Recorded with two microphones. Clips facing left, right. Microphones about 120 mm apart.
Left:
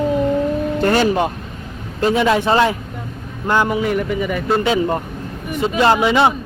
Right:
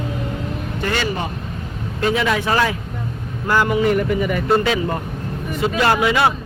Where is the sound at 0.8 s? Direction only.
50° left (ahead or behind).